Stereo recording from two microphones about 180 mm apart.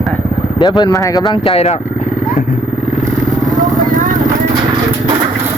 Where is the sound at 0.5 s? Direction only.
20° left (ahead or behind).